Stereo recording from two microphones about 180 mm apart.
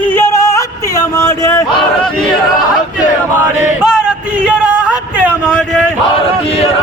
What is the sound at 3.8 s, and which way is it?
Music, 5° right (ahead or behind).